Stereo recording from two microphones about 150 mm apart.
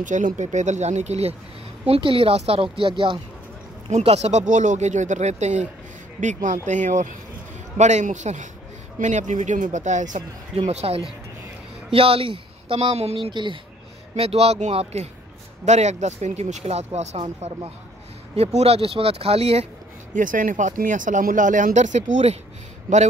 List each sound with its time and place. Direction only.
0.0 s speech: 55° right (ahead or behind); by 3.2 s 35° right (ahead or behind)
3.9 s speech: 45° right (ahead or behind)
10.7 s speech: 45° right (ahead or behind)
18.3 s speech: 45° right (ahead or behind)
20.2 s speech: 60° right (ahead or behind)